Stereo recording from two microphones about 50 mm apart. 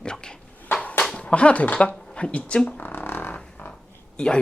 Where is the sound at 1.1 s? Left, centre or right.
Left.